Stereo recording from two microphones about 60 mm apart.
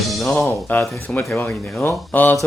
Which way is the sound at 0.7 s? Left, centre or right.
Left.